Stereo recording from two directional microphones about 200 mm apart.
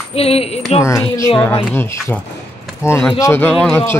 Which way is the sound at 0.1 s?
30° left (ahead or behind).